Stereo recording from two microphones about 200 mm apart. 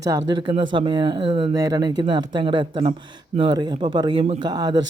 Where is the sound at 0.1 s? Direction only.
25° right (ahead or behind).